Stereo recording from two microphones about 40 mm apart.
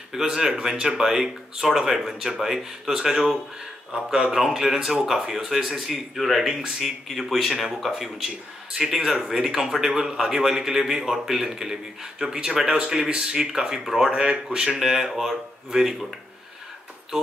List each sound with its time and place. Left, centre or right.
0.1 s speech: centre